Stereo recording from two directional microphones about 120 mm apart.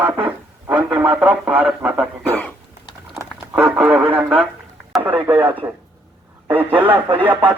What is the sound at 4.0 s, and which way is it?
A man's voice, 15° right (ahead or behind).